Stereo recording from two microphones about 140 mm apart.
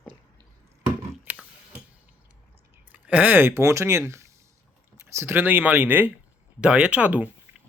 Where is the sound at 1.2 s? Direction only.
10° right (ahead or behind).